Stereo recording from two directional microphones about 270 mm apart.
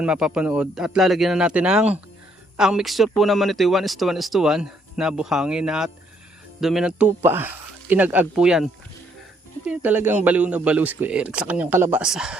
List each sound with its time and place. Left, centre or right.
0.0 s speech: centre